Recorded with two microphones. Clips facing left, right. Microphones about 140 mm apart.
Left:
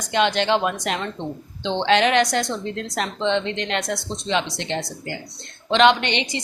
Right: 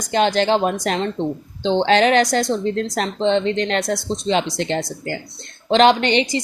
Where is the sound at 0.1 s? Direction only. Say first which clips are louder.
Right 3 dB; 40° right (ahead or behind).